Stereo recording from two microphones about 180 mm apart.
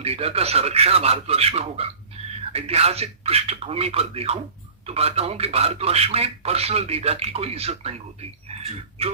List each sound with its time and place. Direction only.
0.0 s speech: 35° right (ahead or behind)